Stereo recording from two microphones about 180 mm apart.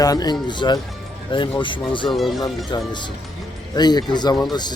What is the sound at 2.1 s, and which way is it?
Speech, centre (ahead or behind).